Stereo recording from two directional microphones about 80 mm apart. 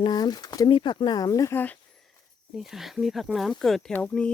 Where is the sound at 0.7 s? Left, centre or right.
Left.